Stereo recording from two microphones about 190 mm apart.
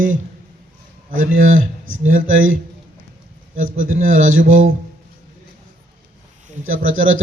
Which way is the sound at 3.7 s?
45° right (ahead or behind).